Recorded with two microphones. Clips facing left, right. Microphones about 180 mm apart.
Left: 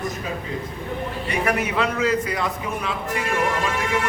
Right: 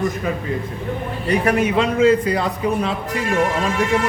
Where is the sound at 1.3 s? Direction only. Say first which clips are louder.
Right 7 dB; 30° right (ahead or behind).